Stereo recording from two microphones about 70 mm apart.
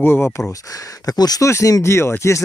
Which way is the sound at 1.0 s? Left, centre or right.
Left.